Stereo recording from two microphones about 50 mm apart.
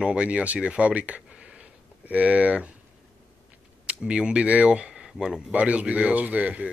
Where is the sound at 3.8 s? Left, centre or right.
Centre.